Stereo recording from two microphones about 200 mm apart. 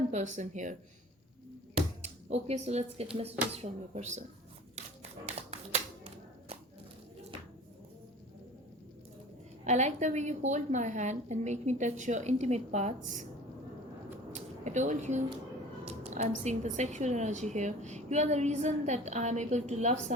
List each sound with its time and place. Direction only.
0.1 s a woman's voice: 35° right (ahead or behind)
1.7 s a sound: 30° right (ahead or behind)
3.2 s a woman's voice: 30° right (ahead or behind)
5.2 s shuffling cards: 30° right (ahead or behind)
9.6 s a woman's voice: 35° right (ahead or behind)
14.3 s a sound: 35° right (ahead or behind)
15.8 s a woman's voice: 35° right (ahead or behind)